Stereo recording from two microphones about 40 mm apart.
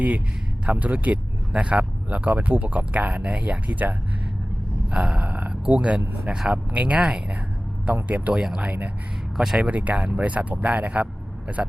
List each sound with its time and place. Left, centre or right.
0.7 s speech: right
3.1 s speech: right
4.9 s a sound: right
5.2 s speech: right
6.2 s speech: centre
6.5 s speech: right
7.9 s a sound: right
8.6 s speech: right
9.4 s speech: centre
9.6 s speech: right